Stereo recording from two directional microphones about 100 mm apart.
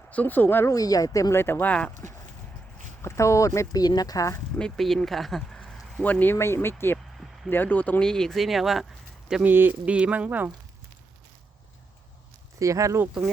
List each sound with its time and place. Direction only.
0.1 s speech: 15° left (ahead or behind)
0.7 s speech: 35° left (ahead or behind); by 2.0 s 15° left (ahead or behind)
3.0 s speech: 30° left (ahead or behind)
3.7 s speech: 40° left (ahead or behind)
4.5 s speech: 5° left (ahead or behind)
9.4 s speech: 20° right (ahead or behind)
12.5 s speech: 35° right (ahead or behind)